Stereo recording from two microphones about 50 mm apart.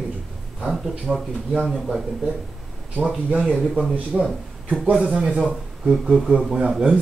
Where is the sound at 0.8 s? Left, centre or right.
Centre.